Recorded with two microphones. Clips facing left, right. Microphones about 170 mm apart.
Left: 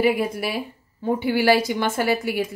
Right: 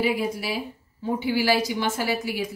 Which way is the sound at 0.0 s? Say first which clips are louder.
Left 4 dB; 55° left (ahead or behind).